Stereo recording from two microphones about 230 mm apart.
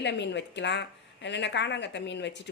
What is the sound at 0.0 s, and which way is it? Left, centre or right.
Speech, left.